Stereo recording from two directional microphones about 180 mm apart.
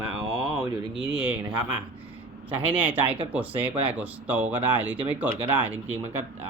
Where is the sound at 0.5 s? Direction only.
20° right (ahead or behind).